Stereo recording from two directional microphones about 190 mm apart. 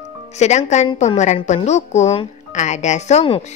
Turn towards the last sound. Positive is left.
turn(degrees=35)  # may be behind; listen again after turning